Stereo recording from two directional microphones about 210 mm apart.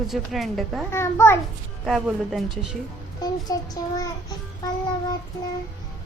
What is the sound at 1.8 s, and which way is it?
Speech, centre (ahead or behind).